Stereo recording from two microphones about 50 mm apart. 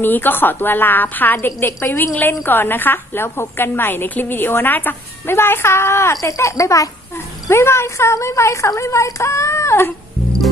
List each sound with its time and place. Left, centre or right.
0.0 s a woman's voice: left
7.5 s a woman's voice: left